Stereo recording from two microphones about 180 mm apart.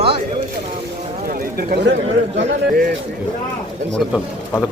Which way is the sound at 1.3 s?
60° right (ahead or behind).